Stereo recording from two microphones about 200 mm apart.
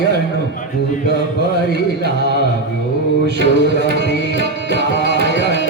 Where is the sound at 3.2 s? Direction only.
55° right (ahead or behind).